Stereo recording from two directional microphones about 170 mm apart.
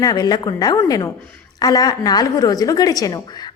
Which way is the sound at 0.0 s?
20° left (ahead or behind).